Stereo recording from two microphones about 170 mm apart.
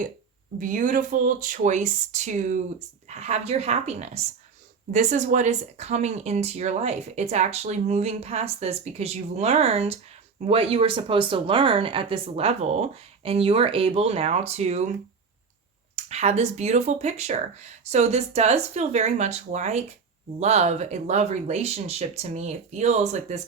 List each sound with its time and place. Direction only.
0.6 s speech: 50° right (ahead or behind)
16.0 s speech: 40° right (ahead or behind)